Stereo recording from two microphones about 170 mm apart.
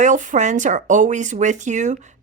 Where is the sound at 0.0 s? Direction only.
45° right (ahead or behind).